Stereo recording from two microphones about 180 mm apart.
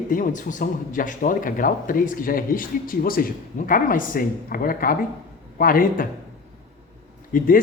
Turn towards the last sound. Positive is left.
turn(degrees=50)  # may be behind; listen again after turning